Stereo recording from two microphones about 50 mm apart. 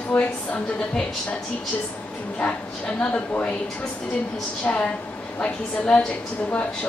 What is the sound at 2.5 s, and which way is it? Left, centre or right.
Speech, centre.